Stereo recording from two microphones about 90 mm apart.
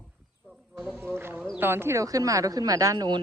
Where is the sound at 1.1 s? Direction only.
25° right (ahead or behind).